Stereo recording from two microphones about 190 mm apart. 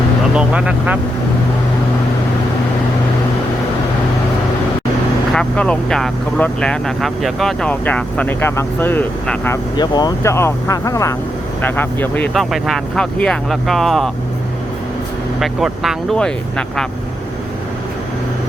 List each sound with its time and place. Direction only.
0.3 s speech: 5° right (ahead or behind)
5.3 s speech: 5° left (ahead or behind)
9.7 s speech: 20° left (ahead or behind); by 14.1 s centre (ahead or behind)
15.4 s speech: centre (ahead or behind)